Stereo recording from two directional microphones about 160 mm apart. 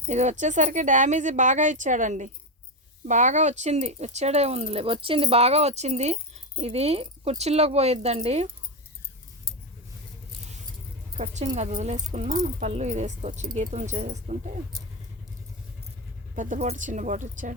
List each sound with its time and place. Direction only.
0.1 s speech: 45° right (ahead or behind)
11.2 s speech: 45° right (ahead or behind)
16.3 s speech: 50° right (ahead or behind)